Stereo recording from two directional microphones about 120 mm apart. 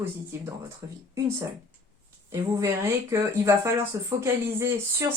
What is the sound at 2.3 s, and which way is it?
Speech, 25° right (ahead or behind).